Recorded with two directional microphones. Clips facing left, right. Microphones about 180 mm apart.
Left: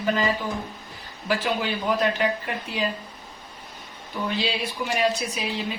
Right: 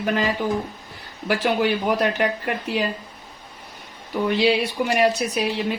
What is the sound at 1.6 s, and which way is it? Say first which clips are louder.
Speech: right 4 dB; 65° right (ahead or behind).